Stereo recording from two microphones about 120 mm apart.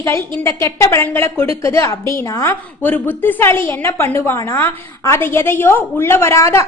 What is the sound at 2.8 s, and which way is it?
A woman's voice, 15° left (ahead or behind).